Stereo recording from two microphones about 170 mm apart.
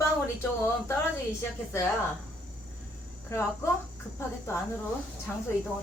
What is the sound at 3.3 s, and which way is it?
Speech, 15° left (ahead or behind).